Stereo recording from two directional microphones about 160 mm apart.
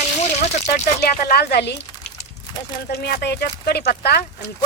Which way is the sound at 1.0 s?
75° left (ahead or behind).